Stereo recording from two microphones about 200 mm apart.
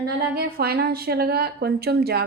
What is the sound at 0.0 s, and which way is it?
A woman's voice, 50° right (ahead or behind).